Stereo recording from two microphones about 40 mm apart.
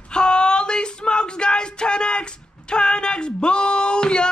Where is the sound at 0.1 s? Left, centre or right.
Left.